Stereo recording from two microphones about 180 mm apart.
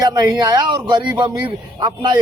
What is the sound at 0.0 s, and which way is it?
A man's voice, 20° right (ahead or behind).